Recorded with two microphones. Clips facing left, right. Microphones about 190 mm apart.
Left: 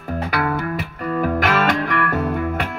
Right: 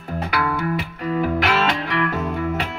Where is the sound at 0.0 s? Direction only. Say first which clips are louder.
Left 2 dB; 45° left (ahead or behind).